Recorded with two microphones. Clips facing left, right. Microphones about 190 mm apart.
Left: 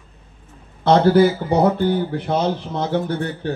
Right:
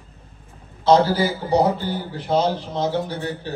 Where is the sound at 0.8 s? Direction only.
60° left (ahead or behind).